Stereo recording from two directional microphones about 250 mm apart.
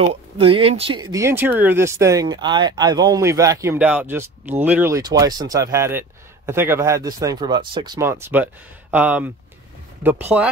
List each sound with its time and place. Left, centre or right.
0.1 s speech: right
1.1 s speech: centre